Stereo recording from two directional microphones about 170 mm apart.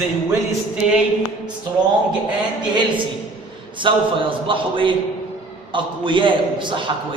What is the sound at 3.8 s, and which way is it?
A man's voice, 30° right (ahead or behind).